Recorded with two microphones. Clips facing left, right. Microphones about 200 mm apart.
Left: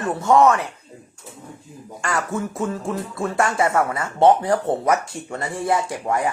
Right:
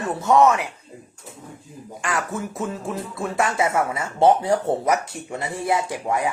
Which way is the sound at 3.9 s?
30° right (ahead or behind).